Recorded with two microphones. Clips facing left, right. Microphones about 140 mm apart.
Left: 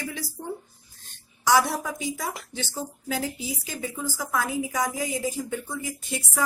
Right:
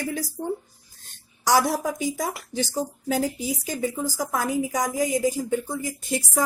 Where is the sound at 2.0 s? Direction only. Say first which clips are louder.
Right 4 dB; 40° right (ahead or behind).